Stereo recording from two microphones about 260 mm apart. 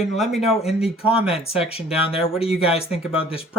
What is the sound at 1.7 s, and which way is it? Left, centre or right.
Speech, left.